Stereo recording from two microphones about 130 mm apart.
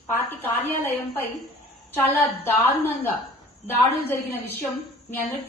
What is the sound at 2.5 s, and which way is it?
A woman's voice, 15° left (ahead or behind).